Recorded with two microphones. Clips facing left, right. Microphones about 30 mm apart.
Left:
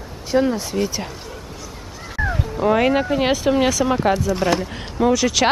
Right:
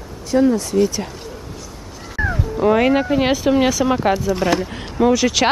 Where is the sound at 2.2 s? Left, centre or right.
Centre.